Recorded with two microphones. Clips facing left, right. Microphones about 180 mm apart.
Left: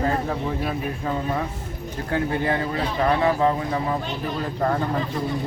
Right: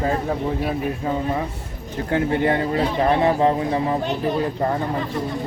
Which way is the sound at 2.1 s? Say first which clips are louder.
Right 4 dB; 25° right (ahead or behind).